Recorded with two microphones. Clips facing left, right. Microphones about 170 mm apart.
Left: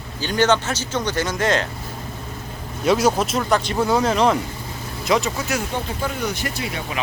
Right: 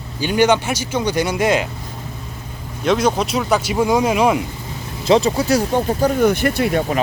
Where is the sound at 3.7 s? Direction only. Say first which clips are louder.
Right 3 dB; 15° right (ahead or behind).